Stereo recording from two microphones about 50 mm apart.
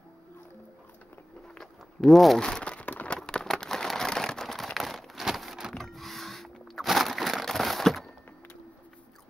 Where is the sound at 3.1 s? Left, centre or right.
Centre.